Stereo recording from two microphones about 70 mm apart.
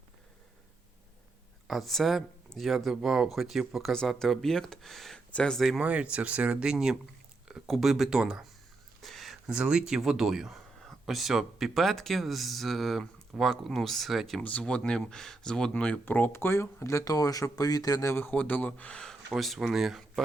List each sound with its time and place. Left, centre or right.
1.6 s speech: centre
5.8 s speech: centre
9.0 s a sound: centre
9.5 s speech: centre
14.6 s speech: centre
15.7 s speech: centre; by 18.1 s left
18.1 s speech: left
19.3 s speech: centre